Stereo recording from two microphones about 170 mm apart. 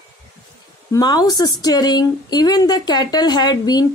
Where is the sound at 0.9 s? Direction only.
20° left (ahead or behind).